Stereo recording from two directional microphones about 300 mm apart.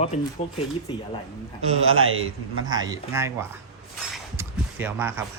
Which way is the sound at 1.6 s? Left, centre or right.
Right.